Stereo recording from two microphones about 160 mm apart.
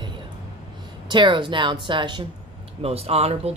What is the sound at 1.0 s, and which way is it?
A woman's voice, 30° right (ahead or behind).